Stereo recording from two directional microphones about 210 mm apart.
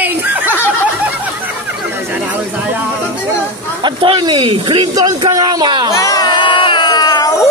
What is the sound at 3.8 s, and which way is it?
Speech, 20° right (ahead or behind).